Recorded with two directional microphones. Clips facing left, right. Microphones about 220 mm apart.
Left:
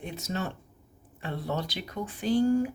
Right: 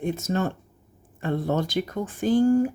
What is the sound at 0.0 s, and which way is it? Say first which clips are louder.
Speech: right 8 dB; 50° right (ahead or behind).